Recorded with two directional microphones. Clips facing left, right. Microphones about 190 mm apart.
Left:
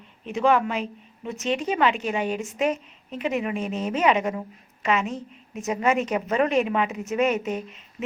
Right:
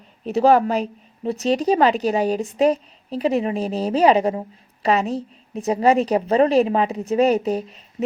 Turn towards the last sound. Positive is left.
turn(degrees=-35)  # may be behind; listen again after turning